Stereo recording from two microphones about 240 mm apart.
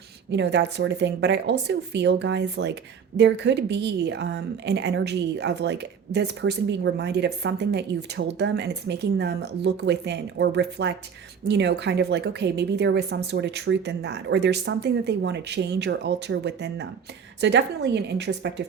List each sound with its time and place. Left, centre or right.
0.3 s a woman's voice: right